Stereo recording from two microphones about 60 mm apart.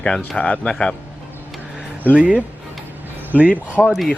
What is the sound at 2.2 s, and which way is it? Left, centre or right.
Speech, centre.